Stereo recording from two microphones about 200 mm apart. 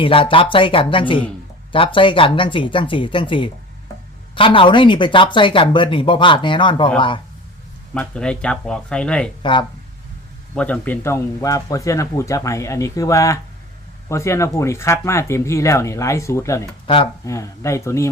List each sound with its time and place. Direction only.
0.0 s speech: 25° left (ahead or behind)
7.9 s speech: 5° left (ahead or behind)
9.4 s speech: 25° left (ahead or behind)
10.5 s speech: 5° left (ahead or behind)
16.8 s speech: 25° left (ahead or behind)
17.2 s speech: 15° left (ahead or behind)